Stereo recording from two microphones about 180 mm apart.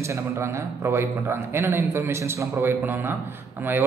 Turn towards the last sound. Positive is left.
turn(degrees=-10)  # may be behind; listen again after turning